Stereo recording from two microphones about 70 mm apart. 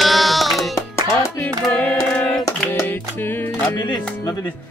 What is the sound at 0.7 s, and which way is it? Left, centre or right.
Music, left.